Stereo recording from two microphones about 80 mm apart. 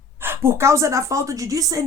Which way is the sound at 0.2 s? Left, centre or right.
Right.